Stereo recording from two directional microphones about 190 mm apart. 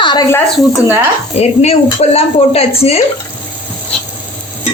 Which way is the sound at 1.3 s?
35° left (ahead or behind).